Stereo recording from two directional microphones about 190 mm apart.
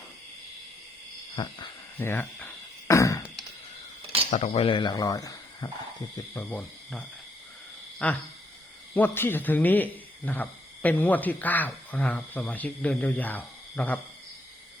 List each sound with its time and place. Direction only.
1.4 s speech: 25° left (ahead or behind)
2.0 s a sound: 10° left (ahead or behind)
4.3 s speech: 35° left (ahead or behind); by 14.0 s 10° left (ahead or behind)